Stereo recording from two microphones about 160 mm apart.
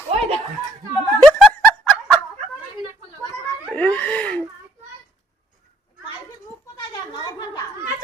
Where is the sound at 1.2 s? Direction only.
5° left (ahead or behind).